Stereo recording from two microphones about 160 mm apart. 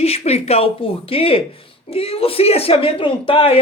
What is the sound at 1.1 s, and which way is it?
Speech, 35° left (ahead or behind).